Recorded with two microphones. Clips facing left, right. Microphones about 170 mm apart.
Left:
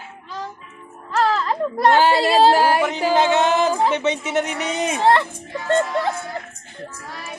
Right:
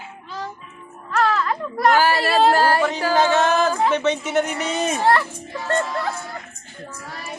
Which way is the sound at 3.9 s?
20° left (ahead or behind).